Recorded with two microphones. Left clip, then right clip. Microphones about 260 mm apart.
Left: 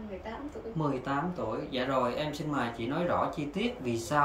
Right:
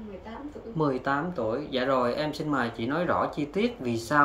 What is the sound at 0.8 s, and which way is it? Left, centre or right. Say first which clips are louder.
Speech: right 6 dB; right.